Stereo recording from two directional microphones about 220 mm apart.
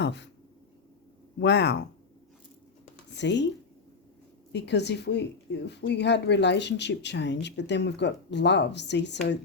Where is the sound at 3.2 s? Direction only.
55° left (ahead or behind).